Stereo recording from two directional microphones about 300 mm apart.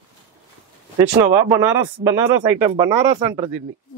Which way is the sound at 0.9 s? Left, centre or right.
Centre.